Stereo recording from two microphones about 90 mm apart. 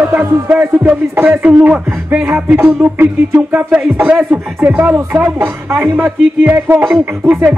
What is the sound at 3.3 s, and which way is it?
Speech, 10° right (ahead or behind).